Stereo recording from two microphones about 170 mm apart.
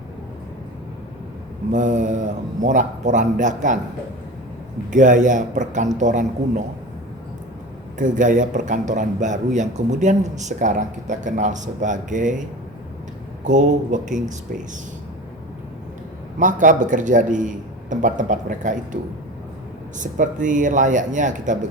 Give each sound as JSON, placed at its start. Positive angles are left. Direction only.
{"t": 1.7, "sound": "a man's voice", "side_deg": -50}
{"t": 4.9, "sound": "a man's voice", "side_deg": -50}
{"t": 7.9, "sound": "a man's voice", "side_deg": -50}
{"t": 13.4, "sound": "a man's voice", "side_deg": -45}
{"t": 16.4, "sound": "a man's voice", "side_deg": -50}
{"t": 20.0, "sound": "a man's voice", "side_deg": -50}